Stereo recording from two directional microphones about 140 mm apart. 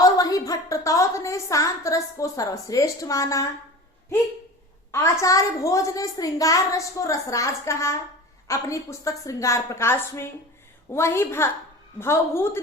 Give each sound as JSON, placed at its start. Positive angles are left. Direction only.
{"t": 0.0, "sound": "a woman's voice", "side_deg": 25}
{"t": 5.2, "sound": "a woman's voice", "side_deg": 25}